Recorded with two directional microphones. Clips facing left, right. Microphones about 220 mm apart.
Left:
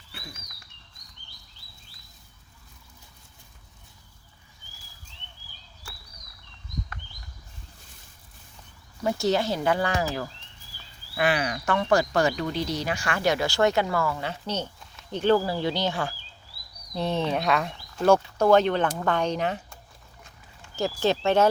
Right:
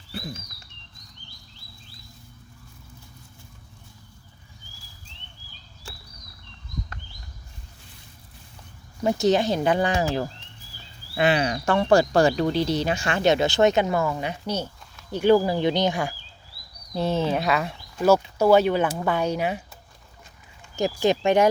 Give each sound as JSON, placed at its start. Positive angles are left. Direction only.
{"t": 9.0, "sound": "speech", "side_deg": -20}
{"t": 16.9, "sound": "speech", "side_deg": -5}